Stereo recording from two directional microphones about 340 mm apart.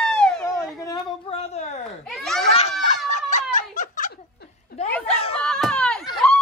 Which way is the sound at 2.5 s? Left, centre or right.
Centre.